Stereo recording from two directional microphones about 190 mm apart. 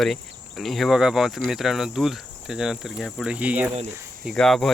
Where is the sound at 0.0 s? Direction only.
Centre (ahead or behind).